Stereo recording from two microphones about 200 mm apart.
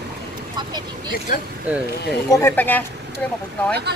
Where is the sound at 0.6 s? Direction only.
20° right (ahead or behind).